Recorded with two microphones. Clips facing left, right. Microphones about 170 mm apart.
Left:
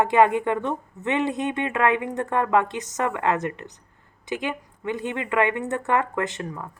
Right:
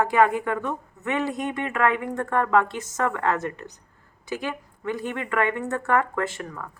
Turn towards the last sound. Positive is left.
turn(degrees=20)  # may be behind; listen again after turning